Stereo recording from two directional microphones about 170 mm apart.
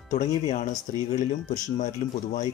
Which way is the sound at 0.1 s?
45° left (ahead or behind).